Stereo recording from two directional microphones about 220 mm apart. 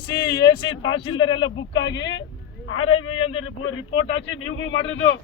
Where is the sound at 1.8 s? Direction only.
55° left (ahead or behind).